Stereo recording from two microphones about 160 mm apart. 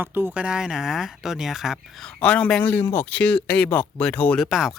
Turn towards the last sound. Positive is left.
turn(degrees=0)  # may be behind; listen again after turning